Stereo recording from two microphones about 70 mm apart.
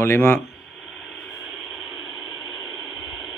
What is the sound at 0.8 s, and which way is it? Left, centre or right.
Radio, centre.